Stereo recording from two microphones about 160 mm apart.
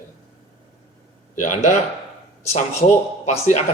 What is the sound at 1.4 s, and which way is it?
A man's voice, 45° left (ahead or behind).